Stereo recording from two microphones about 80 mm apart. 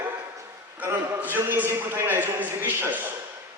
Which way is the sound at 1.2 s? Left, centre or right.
Right.